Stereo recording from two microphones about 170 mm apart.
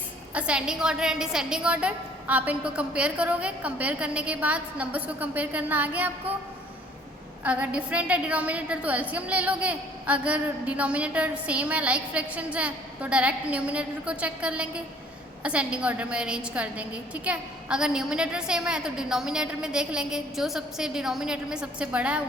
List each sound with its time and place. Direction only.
0.3 s a woman's voice: 5° right (ahead or behind)
7.4 s a woman's voice: 5° right (ahead or behind)